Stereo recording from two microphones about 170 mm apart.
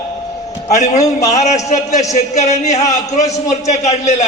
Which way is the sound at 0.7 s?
45° left (ahead or behind).